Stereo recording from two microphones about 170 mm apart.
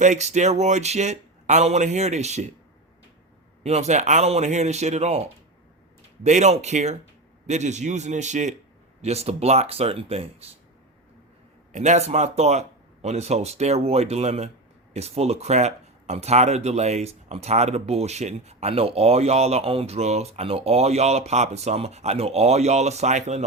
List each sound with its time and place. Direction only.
0.0 s speech: 45° right (ahead or behind)
3.6 s a man's voice: 40° right (ahead or behind)
11.7 s speech: 45° right (ahead or behind)